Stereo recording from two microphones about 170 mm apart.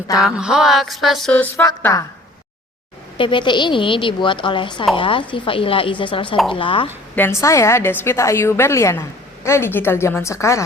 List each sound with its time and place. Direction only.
0.2 s a sound: 5° right (ahead or behind)
1.6 s a woman's voice: 20° left (ahead or behind)
3.2 s a woman's voice: 30° left (ahead or behind)
7.2 s a woman's voice: 15° left (ahead or behind)